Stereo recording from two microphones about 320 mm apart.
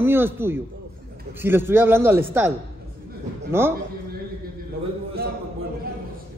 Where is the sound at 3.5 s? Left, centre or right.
Centre.